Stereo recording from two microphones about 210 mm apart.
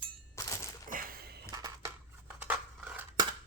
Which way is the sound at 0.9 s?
40° right (ahead or behind).